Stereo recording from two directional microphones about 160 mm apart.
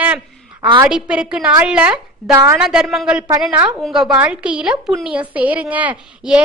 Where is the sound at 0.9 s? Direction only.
5° right (ahead or behind).